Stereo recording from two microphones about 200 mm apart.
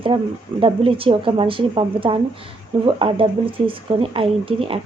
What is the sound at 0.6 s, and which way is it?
Speech, 25° right (ahead or behind).